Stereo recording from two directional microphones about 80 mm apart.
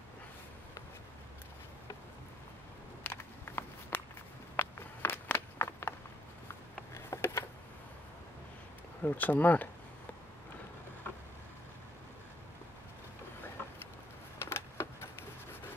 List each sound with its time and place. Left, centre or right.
3.0 s a sound: left
9.0 s speech: left
14.4 s power windows: left